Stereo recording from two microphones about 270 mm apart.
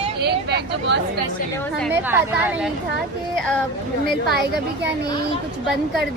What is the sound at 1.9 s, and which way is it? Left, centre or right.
A woman's voice, centre.